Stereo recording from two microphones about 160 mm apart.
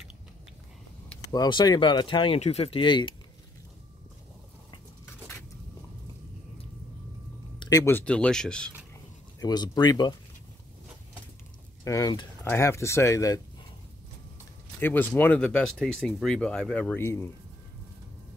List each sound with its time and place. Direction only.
1.3 s speech: 25° left (ahead or behind)
7.5 s a sound: 30° left (ahead or behind)
7.8 s speech: 10° left (ahead or behind)
9.4 s speech: 25° left (ahead or behind)
11.8 s speech: 20° left (ahead or behind)
14.8 s speech: 10° left (ahead or behind)